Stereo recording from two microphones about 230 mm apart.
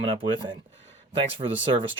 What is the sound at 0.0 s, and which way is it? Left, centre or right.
Speech, right.